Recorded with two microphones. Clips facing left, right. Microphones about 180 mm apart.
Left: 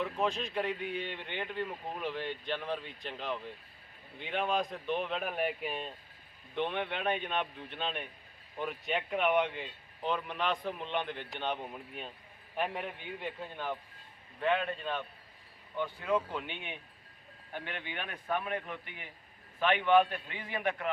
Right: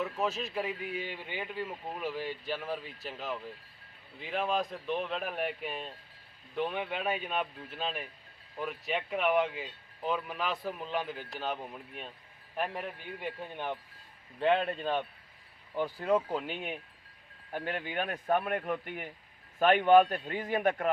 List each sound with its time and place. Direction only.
0.0 s a man's voice: 5° right (ahead or behind)
14.3 s speech: 30° right (ahead or behind)